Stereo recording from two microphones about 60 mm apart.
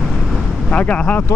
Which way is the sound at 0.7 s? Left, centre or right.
Left.